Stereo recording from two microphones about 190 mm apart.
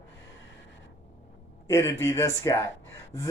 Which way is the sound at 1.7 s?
15° left (ahead or behind).